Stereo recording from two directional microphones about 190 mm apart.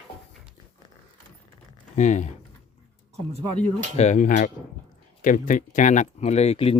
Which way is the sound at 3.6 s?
40° left (ahead or behind).